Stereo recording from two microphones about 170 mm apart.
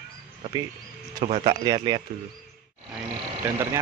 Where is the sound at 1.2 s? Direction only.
35° right (ahead or behind).